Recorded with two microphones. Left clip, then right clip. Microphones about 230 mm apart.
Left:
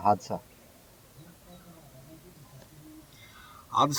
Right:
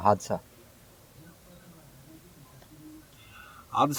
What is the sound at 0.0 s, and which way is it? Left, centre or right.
Speech, right.